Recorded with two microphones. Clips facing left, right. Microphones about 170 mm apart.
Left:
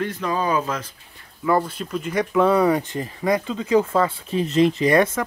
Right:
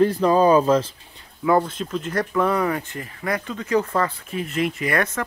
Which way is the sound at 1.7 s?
5° left (ahead or behind).